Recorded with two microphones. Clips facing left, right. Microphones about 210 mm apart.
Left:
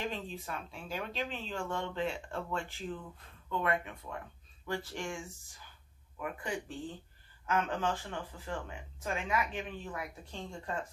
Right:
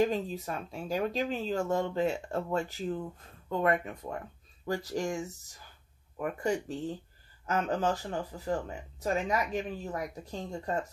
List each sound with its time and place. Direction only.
0.0 s speech: 40° right (ahead or behind)